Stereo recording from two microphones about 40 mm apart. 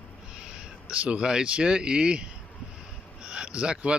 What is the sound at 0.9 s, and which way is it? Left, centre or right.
Speech, right.